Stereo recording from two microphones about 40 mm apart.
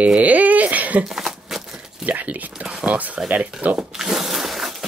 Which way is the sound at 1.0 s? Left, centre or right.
Centre.